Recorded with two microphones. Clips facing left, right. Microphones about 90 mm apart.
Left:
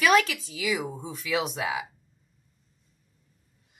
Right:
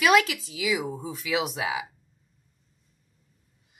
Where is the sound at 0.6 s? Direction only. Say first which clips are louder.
Right 1 dB; centre (ahead or behind).